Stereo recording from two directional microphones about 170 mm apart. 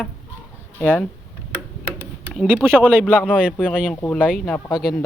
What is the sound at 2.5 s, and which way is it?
Speech, 10° right (ahead or behind).